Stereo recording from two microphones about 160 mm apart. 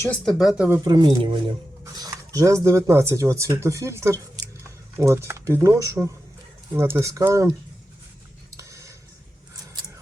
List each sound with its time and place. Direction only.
0.0 s speech: 5° left (ahead or behind)
0.9 s speech: 30° right (ahead or behind)
8.5 s a sound: 20° right (ahead or behind)